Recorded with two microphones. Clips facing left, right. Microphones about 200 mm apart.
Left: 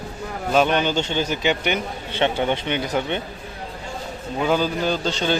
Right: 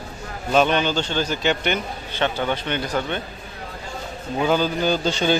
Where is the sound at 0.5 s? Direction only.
10° left (ahead or behind).